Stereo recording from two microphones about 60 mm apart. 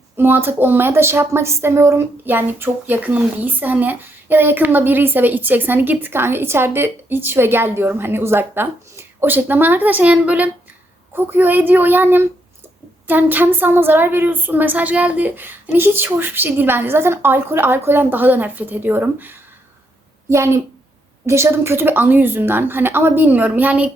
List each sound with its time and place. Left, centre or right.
0.2 s speech: right
2.2 s speech: right
11.1 s speech: right
20.3 s speech: right